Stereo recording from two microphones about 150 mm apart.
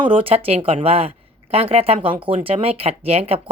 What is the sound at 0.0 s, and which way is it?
Speech, 35° right (ahead or behind).